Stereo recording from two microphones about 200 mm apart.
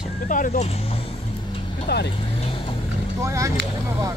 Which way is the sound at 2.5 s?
25° left (ahead or behind).